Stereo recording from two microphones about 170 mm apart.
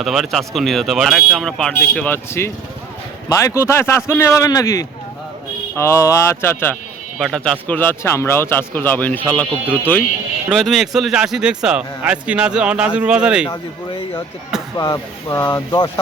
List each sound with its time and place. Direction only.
0.0 s speech: centre (ahead or behind)
10.5 s speech: centre (ahead or behind)
13.5 s speech: 25° left (ahead or behind)